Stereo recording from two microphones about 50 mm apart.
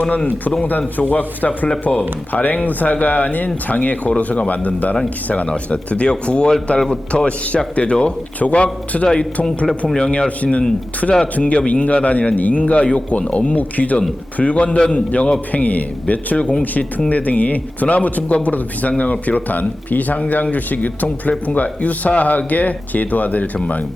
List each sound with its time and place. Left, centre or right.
0.0 s speech: left
11.0 s speech: centre
11.3 s speech: left